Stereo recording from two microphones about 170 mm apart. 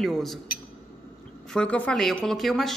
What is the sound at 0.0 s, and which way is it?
Speech, centre (ahead or behind).